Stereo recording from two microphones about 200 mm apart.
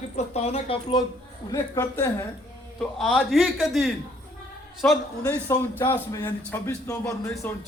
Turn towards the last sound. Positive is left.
turn(degrees=15)  # may be behind; listen again after turning